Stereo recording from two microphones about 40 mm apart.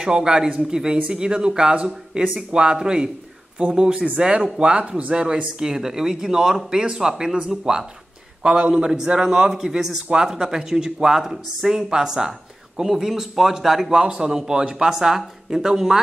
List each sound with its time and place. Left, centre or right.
0.0 s speech: centre
14.0 s speech: centre